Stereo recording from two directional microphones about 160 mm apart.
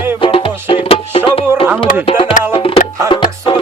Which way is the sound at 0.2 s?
35° left (ahead or behind).